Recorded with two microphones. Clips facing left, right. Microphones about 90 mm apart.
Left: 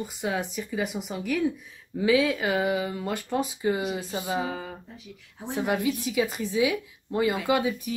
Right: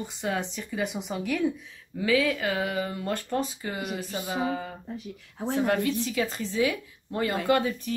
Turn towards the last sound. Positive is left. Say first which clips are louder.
# even
turn(degrees=10)  # may be behind; listen again after turning